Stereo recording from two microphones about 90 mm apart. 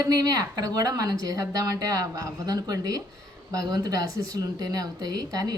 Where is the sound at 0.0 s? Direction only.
45° right (ahead or behind).